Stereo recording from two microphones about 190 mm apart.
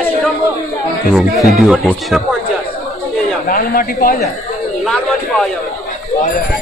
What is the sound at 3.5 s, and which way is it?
Speech, 50° left (ahead or behind).